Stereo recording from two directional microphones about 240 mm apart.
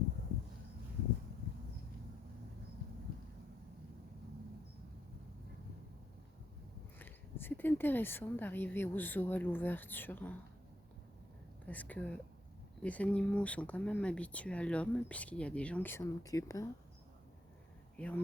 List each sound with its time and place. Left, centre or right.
7.0 s speech: centre
11.6 s speech: centre
17.9 s speech: centre